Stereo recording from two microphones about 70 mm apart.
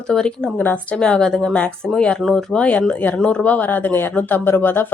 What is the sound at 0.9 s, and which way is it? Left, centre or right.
Speech, centre.